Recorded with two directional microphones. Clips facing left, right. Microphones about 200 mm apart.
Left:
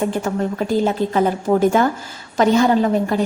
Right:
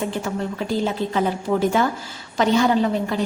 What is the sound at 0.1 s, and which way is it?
A woman's voice, 50° left (ahead or behind).